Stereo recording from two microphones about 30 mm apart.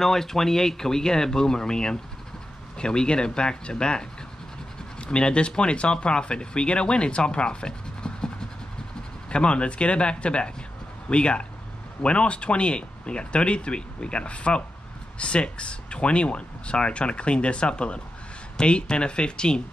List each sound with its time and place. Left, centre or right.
0.0 s speech: centre; by 8.3 s left
9.3 s speech: left